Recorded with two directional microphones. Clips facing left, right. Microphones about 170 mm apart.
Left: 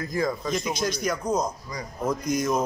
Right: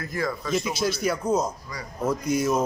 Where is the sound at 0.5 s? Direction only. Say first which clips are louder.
Right 1 dB; 5° right (ahead or behind).